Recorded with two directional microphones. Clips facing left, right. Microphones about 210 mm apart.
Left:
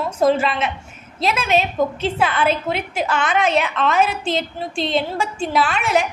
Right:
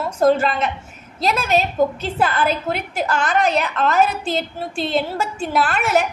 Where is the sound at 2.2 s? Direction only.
Centre (ahead or behind).